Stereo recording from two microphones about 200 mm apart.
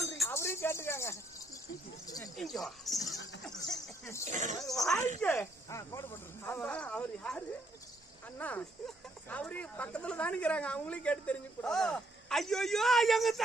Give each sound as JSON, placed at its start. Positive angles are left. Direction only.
{"t": 0.3, "sound": "a sound", "side_deg": 10}
{"t": 2.3, "sound": "a woman's voice", "side_deg": 0}
{"t": 4.3, "sound": "speech", "side_deg": -35}
{"t": 4.6, "sound": "a woman's voice", "side_deg": 0}
{"t": 5.2, "sound": "a woman's voice", "side_deg": 15}